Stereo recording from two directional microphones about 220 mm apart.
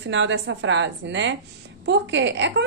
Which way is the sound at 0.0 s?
55° right (ahead or behind).